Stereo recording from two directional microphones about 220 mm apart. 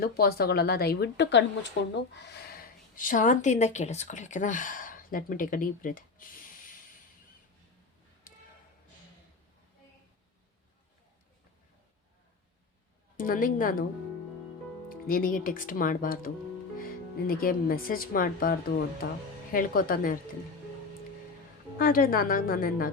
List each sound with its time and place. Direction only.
0.0 s a woman's voice: 45° left (ahead or behind)
8.3 s a sound: 40° left (ahead or behind)
13.1 s a woman's voice: 40° left (ahead or behind)
14.8 s speech: 40° left (ahead or behind)
21.8 s speech: 40° left (ahead or behind)